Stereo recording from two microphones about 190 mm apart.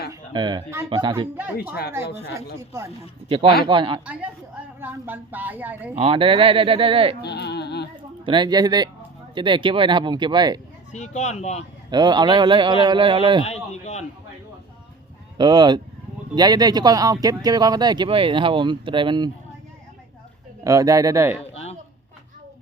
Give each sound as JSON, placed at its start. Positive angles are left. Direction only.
{"t": 0.1, "sound": "a woman's voice", "side_deg": -20}
{"t": 2.6, "sound": "a woman's voice", "side_deg": -15}
{"t": 3.2, "sound": "speech", "side_deg": -30}
{"t": 4.0, "sound": "a woman's voice", "side_deg": -5}
{"t": 6.0, "sound": "speech", "side_deg": -30}
{"t": 7.2, "sound": "a sound", "side_deg": 60}
{"t": 8.2, "sound": "speech", "side_deg": -25}
{"t": 10.9, "sound": "speech", "side_deg": 40}
{"t": 11.9, "sound": "speech", "side_deg": -20}
{"t": 13.4, "sound": "speech", "side_deg": 35}
{"t": 15.4, "sound": "speech", "side_deg": -20}
{"t": 20.7, "sound": "a woman's voice", "side_deg": -15}
{"t": 21.5, "sound": "a sound", "side_deg": 35}